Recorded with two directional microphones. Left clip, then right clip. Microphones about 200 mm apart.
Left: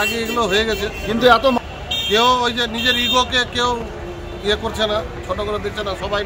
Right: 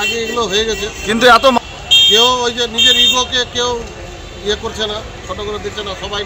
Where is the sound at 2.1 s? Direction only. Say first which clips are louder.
Right 4 dB; 20° left (ahead or behind).